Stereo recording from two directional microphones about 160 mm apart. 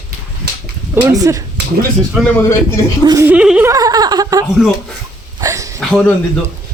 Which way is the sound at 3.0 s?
25° right (ahead or behind).